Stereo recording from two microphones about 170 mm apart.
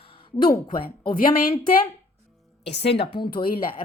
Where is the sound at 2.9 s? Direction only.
30° left (ahead or behind).